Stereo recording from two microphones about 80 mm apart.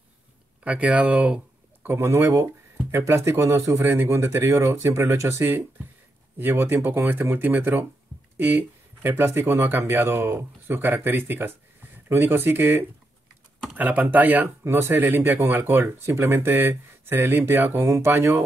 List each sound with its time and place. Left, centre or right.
0.7 s speech: centre
2.0 s speech: right
6.3 s speech: right